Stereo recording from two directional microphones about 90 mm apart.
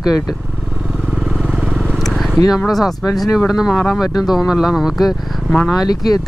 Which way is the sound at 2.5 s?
Centre (ahead or behind).